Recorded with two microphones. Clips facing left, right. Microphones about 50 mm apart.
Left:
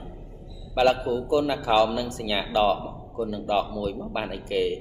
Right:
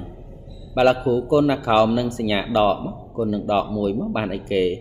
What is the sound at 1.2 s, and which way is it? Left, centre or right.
Speech, right.